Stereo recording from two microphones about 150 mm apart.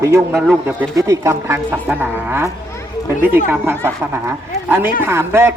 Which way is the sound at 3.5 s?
15° right (ahead or behind).